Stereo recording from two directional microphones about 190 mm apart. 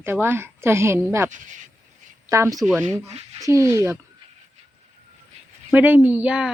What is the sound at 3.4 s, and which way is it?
Speech, 15° right (ahead or behind).